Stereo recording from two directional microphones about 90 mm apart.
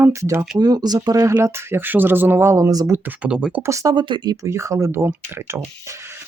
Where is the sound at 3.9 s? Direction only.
55° right (ahead or behind).